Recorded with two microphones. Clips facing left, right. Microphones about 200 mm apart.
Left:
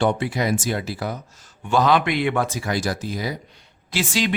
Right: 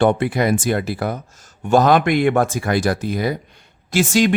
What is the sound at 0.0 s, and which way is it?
Speech, 55° right (ahead or behind).